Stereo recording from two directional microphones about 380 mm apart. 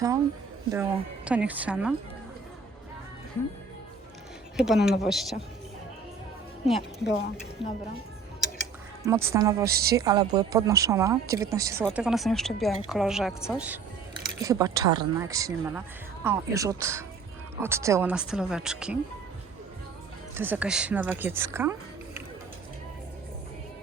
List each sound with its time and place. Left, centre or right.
0.7 s speech: centre
4.5 s speech: centre
6.7 s speech: centre
9.0 s speech: centre
9.6 s a woman's voice: right
9.9 s speech: centre
20.3 s speech: centre